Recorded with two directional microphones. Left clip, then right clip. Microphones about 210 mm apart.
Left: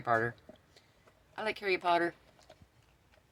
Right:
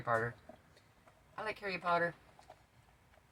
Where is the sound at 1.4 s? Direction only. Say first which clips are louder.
Left 7 dB; 55° left (ahead or behind).